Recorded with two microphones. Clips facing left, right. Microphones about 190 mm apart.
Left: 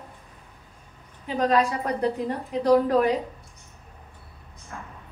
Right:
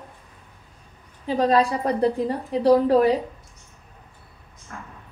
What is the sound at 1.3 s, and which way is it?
A woman's voice, 35° right (ahead or behind).